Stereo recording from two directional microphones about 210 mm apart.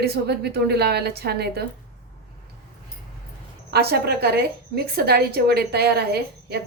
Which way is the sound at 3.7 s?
50° right (ahead or behind).